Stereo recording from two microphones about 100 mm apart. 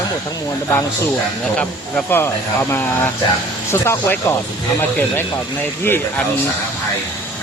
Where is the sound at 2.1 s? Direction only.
25° left (ahead or behind).